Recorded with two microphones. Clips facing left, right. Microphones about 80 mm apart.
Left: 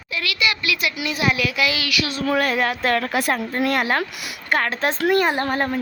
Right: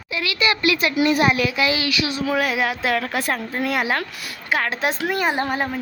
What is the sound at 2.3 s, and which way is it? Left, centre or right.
Speech, centre.